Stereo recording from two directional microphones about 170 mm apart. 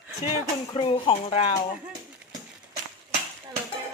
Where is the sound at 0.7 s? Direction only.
30° left (ahead or behind).